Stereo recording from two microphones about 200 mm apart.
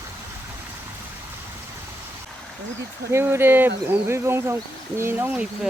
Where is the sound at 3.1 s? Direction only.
10° right (ahead or behind).